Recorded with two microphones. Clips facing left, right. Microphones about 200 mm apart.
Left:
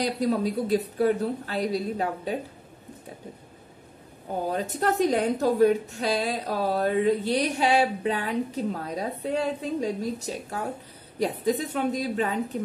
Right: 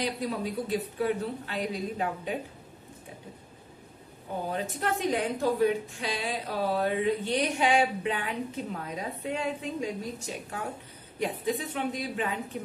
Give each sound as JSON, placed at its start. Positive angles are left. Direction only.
{"t": 0.0, "sound": "a woman's voice", "side_deg": 40}
{"t": 4.5, "sound": "a woman's voice", "side_deg": 40}